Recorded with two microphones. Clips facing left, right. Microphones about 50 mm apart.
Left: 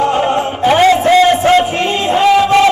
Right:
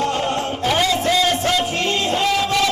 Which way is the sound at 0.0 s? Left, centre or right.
Left.